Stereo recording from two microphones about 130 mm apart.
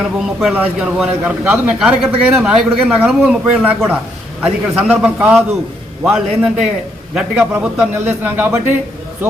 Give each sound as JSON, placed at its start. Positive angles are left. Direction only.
{"t": 0.0, "sound": "a man's voice", "side_deg": 0}